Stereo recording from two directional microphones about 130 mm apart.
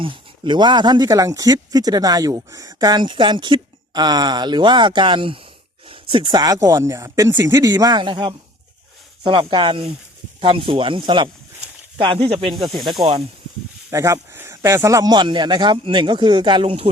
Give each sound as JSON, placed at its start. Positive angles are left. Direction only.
{"t": 0.0, "sound": "speech", "side_deg": -40}
{"t": 2.7, "sound": "speech", "side_deg": -35}
{"t": 13.9, "sound": "speech", "side_deg": -25}